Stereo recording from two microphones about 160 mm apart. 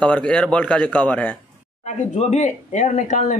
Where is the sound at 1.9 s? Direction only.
45° left (ahead or behind).